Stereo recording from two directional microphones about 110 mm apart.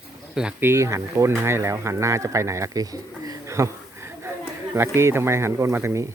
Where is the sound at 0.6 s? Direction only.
25° right (ahead or behind).